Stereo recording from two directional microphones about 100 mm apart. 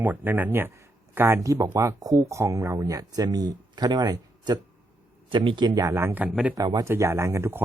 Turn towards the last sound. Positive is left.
turn(degrees=-25)  # may be behind; listen again after turning